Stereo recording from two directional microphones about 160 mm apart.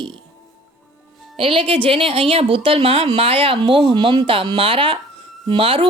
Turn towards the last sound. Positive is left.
turn(degrees=-30)  # may be behind; listen again after turning